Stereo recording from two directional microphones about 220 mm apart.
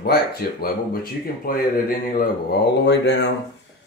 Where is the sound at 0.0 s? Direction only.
45° left (ahead or behind).